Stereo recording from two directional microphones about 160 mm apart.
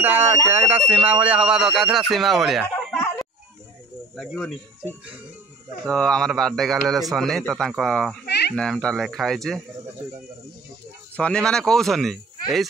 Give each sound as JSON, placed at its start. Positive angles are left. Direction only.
{"t": 0.0, "sound": "speech", "side_deg": -15}
{"t": 4.2, "sound": "speech", "side_deg": 0}
{"t": 5.9, "sound": "speech", "side_deg": 5}
{"t": 8.3, "sound": "a sound", "side_deg": 90}
{"t": 8.5, "sound": "speech", "side_deg": 5}
{"t": 11.1, "sound": "speech", "side_deg": 5}